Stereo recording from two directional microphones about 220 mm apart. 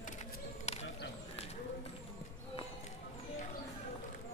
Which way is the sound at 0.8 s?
55° left (ahead or behind).